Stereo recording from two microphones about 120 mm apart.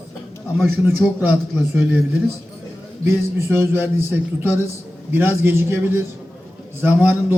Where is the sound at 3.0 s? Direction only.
20° right (ahead or behind).